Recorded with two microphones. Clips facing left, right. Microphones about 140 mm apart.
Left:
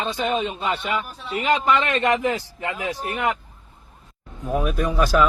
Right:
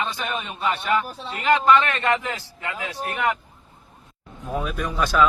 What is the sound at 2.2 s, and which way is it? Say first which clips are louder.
Speech: left 7 dB; 20° left (ahead or behind).